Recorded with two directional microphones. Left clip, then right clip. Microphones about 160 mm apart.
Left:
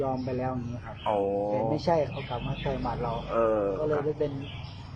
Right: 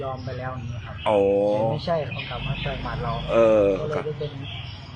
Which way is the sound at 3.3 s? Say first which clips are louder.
Right 8 dB; 10° right (ahead or behind).